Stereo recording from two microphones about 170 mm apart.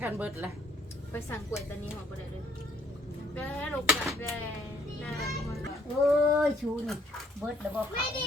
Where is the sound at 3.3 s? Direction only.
10° left (ahead or behind).